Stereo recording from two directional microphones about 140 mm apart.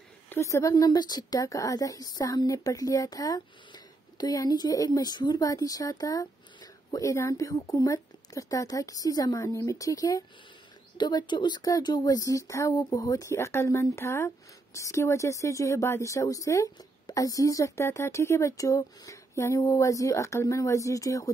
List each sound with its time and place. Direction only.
0.3 s speech: 20° left (ahead or behind)